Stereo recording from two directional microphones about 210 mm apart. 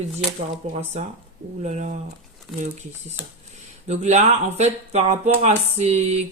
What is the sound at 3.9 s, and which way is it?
Speech, 30° right (ahead or behind).